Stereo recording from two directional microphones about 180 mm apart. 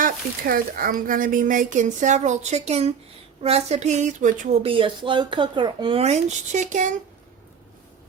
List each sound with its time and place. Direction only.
0.0 s a woman's voice: 50° right (ahead or behind)
4.6 s speech: 30° right (ahead or behind); by 6.9 s 45° right (ahead or behind)